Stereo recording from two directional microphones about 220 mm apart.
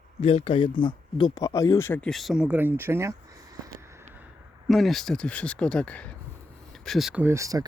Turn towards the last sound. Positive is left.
turn(degrees=-15)  # may be behind; listen again after turning